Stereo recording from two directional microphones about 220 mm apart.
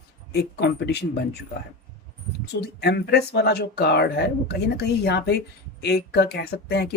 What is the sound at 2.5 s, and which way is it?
Speech, 50° left (ahead or behind).